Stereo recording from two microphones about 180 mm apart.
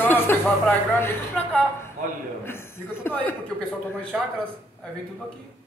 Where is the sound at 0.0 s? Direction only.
10° left (ahead or behind).